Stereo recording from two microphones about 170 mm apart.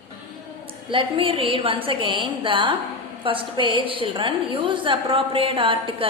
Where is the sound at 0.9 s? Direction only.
30° right (ahead or behind).